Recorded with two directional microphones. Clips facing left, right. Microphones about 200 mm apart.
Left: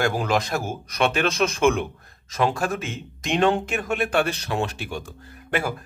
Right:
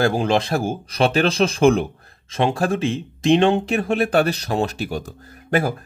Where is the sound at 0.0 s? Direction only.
30° right (ahead or behind).